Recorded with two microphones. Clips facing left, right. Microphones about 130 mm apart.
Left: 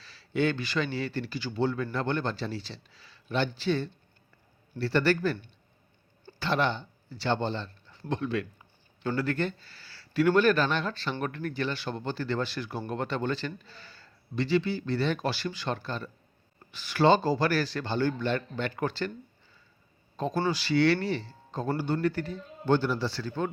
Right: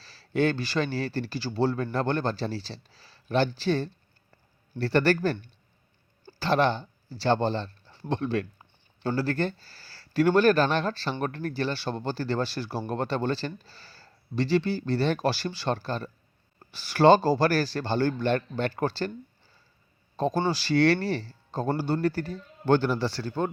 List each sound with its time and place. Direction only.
0.0 s a man's voice: 40° right (ahead or behind)
20.1 s speech: 35° right (ahead or behind)
22.7 s speech: 50° right (ahead or behind)